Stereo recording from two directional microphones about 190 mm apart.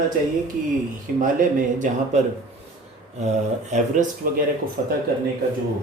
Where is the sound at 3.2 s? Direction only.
35° right (ahead or behind).